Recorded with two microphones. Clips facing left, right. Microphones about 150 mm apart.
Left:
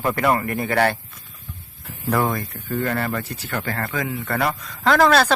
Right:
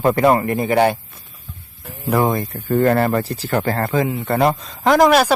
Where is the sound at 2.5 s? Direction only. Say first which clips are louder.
Right 9 dB; 40° right (ahead or behind); by 4.9 s 25° right (ahead or behind).